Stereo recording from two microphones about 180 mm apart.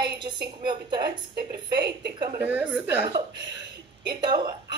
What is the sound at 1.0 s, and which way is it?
A woman's voice, 60° right (ahead or behind).